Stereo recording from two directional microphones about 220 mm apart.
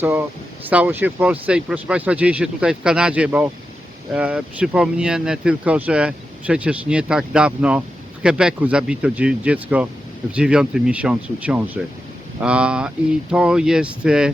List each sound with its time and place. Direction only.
0.0 s speech: 10° right (ahead or behind)